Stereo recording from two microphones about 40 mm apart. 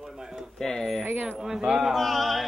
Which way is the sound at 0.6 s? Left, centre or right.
Centre.